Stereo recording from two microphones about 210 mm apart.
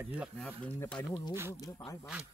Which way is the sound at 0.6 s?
5° left (ahead or behind).